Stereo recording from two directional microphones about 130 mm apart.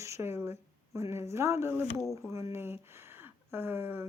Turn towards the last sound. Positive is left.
turn(degrees=-15)  # may be behind; listen again after turning